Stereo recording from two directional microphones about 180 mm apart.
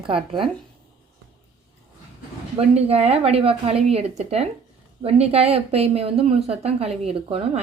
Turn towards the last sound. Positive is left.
turn(degrees=-35)  # may be behind; listen again after turning